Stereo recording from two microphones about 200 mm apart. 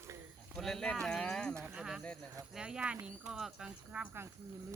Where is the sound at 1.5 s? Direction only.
10° right (ahead or behind).